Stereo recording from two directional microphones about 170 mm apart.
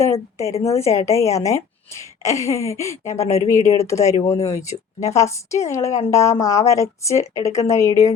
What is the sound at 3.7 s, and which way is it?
Speech, 15° left (ahead or behind).